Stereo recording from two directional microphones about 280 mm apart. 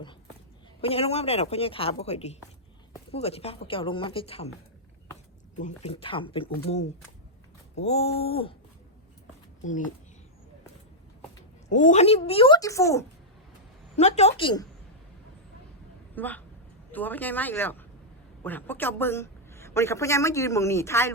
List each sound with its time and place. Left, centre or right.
0.8 s a woman's voice: left
5.5 s a woman's voice: left
11.7 s a woman's voice: left; by 13.1 s centre
13.9 s a woman's voice: left
16.1 s a woman's voice: centre